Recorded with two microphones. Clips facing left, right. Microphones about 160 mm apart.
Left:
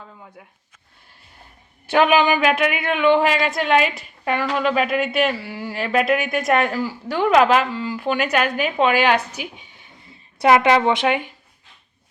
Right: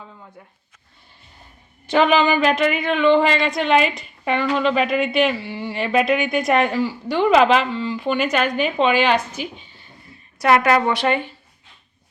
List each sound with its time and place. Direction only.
1.9 s a woman's voice: 10° left (ahead or behind)